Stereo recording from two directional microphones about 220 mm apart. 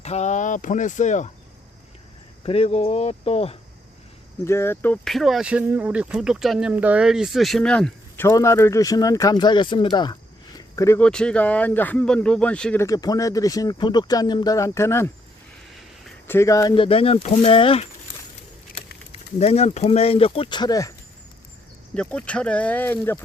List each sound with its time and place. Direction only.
0.0 s speech: 30° left (ahead or behind)
2.4 s speech: 25° left (ahead or behind)
4.4 s speech: 10° left (ahead or behind)
19.1 s speech: 30° left (ahead or behind)
21.9 s speech: 5° left (ahead or behind)